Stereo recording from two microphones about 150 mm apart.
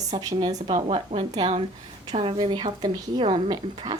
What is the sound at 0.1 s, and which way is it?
Speech, 25° right (ahead or behind).